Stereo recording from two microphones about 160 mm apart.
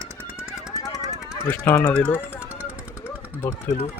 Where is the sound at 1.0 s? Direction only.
20° right (ahead or behind).